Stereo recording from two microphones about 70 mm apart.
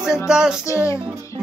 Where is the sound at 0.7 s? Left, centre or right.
Left.